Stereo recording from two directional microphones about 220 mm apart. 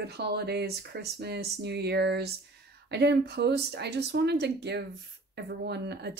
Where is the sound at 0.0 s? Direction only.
50° right (ahead or behind).